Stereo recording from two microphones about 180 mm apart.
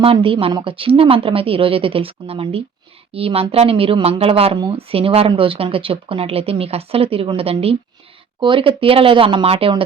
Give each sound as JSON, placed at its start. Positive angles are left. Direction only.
{"t": 0.0, "sound": "speech", "side_deg": -30}